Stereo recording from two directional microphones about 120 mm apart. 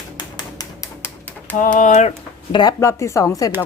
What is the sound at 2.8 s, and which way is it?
Speech, 25° left (ahead or behind).